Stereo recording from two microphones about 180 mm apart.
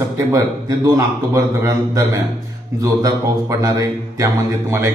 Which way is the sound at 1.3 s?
20° right (ahead or behind).